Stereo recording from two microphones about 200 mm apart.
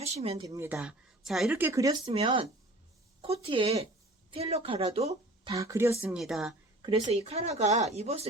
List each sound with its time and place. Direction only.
0.0 s speech: 30° right (ahead or behind)
0.4 s speech: 15° right (ahead or behind)
0.8 s speech: centre (ahead or behind)
2.0 s a woman's voice: 30° right (ahead or behind)
5.5 s speech: 15° right (ahead or behind)
6.1 s speech: centre (ahead or behind)
6.8 s a woman's voice: 20° right (ahead or behind)
7.1 s speech: 30° right (ahead or behind)